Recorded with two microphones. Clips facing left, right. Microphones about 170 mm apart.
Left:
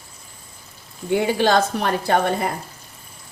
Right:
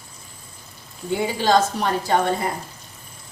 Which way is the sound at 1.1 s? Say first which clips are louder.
Left 2 dB; 60° left (ahead or behind).